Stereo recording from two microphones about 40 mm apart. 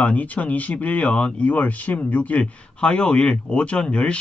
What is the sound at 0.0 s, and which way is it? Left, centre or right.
Speech, left.